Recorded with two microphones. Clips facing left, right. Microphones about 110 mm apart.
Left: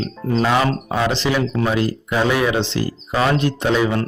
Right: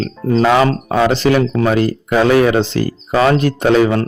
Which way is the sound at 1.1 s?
50° right (ahead or behind).